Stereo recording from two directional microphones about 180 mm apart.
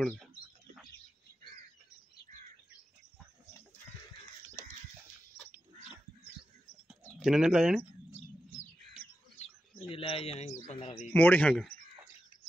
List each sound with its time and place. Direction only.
0.0 s speech: 5° left (ahead or behind)
6.9 s bird: centre (ahead or behind)
9.8 s a man's voice: 30° left (ahead or behind)
11.1 s speech: 10° left (ahead or behind)